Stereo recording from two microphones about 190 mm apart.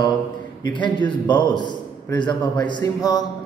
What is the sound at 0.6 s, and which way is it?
A man's voice, 25° left (ahead or behind).